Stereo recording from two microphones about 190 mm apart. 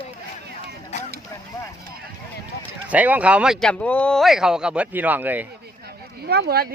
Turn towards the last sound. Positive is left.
turn(degrees=-55)  # may be behind; listen again after turning